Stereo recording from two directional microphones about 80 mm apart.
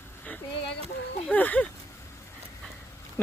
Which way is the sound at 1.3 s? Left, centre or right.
Centre.